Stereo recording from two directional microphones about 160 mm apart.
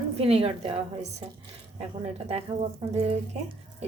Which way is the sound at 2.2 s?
40° right (ahead or behind).